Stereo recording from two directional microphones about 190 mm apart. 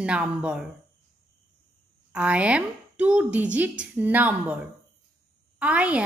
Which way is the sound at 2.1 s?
5° right (ahead or behind).